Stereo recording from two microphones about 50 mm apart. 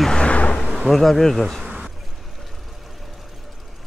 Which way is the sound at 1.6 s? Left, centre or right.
Centre.